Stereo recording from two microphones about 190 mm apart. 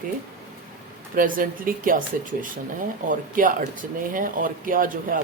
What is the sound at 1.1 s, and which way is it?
Speech, 45° right (ahead or behind).